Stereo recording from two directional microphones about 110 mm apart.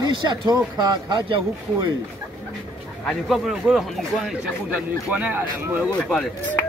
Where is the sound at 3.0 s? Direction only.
Centre (ahead or behind).